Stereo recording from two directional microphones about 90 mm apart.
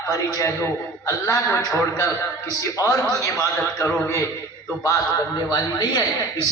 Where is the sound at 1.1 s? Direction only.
40° left (ahead or behind).